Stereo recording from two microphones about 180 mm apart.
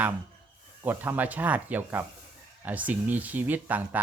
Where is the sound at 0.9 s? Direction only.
10° right (ahead or behind).